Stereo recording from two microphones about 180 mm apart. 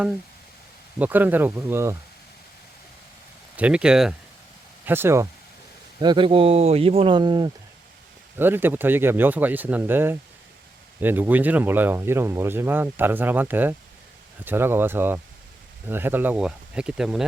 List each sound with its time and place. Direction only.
0.9 s speech: 10° right (ahead or behind)
3.6 s speech: 5° right (ahead or behind)
6.0 s speech: 25° right (ahead or behind)
8.4 s speech: 10° right (ahead or behind)